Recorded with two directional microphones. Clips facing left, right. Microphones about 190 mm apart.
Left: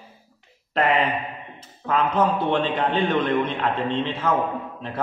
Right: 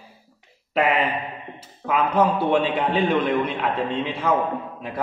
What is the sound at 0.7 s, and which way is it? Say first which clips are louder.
A man's voice: even; 5° right (ahead or behind).